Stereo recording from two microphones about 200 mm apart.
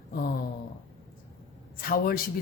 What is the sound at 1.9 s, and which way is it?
Speech, 50° left (ahead or behind).